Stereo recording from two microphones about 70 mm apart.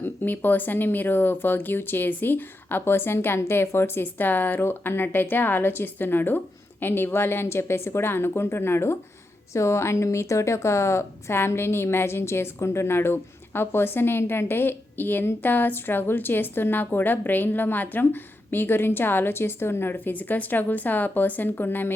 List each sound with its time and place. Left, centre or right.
0.0 s a woman's voice: left